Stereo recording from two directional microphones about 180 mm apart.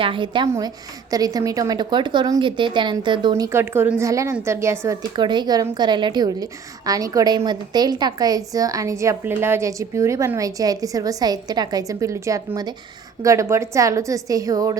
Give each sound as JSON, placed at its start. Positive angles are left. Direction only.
{"t": 0.0, "sound": "a woman's voice", "side_deg": -25}
{"t": 5.1, "sound": "a woman's voice", "side_deg": -25}